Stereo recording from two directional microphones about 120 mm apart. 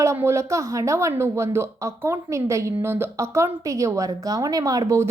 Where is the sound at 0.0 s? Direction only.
20° right (ahead or behind).